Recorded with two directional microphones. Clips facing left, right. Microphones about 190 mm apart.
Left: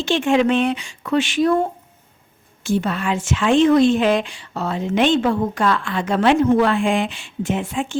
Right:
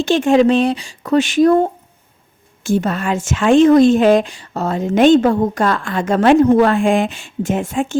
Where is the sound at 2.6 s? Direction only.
45° right (ahead or behind).